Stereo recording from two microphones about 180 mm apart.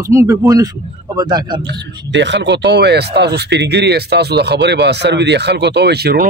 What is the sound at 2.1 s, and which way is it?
Speech, 80° right.